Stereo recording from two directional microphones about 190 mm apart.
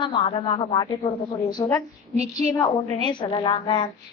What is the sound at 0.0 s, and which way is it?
A woman's voice, 25° left (ahead or behind).